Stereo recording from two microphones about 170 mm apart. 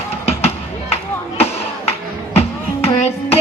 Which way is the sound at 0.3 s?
35° left (ahead or behind).